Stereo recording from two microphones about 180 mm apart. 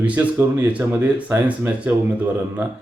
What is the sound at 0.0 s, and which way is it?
Speech, 10° right (ahead or behind).